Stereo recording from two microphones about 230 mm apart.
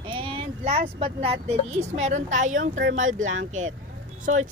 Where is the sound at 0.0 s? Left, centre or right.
Right.